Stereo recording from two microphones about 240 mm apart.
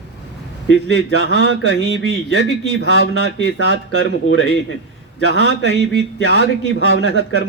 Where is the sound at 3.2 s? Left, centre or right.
Left.